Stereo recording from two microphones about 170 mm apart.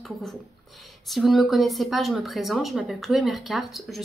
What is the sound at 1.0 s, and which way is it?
A woman's voice, centre (ahead or behind).